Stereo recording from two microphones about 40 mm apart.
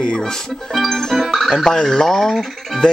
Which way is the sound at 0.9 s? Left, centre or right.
Centre.